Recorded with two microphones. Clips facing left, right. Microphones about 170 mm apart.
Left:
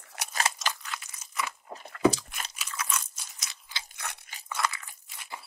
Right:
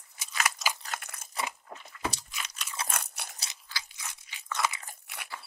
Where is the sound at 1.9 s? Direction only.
60° left (ahead or behind).